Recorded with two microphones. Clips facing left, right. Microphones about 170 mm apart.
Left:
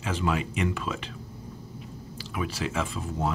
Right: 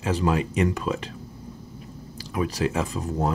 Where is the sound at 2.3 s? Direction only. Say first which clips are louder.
Right 6 dB; 40° right (ahead or behind).